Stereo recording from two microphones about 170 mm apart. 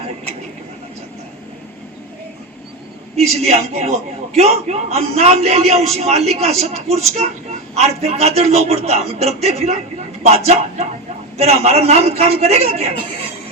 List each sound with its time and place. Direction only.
3.4 s a man's voice: 40° right (ahead or behind)